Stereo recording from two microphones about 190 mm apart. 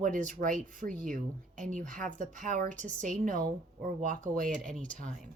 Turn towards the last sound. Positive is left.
turn(degrees=-45)  # may be behind; listen again after turning